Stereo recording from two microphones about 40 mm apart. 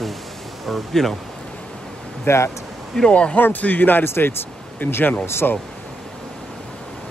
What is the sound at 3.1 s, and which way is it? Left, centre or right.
Speech, left.